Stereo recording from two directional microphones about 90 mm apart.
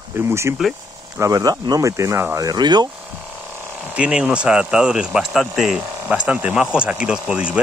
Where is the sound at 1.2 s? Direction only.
40° right (ahead or behind).